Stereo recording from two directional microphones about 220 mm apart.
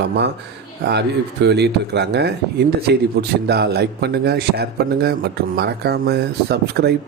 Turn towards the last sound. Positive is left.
turn(degrees=-45)  # may be behind; listen again after turning